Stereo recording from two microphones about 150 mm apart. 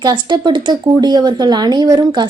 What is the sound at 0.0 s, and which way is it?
Speech, 30° right (ahead or behind).